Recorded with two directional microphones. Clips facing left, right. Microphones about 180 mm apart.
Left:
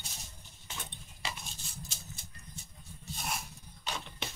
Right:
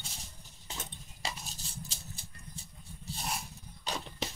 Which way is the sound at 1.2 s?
35° right (ahead or behind).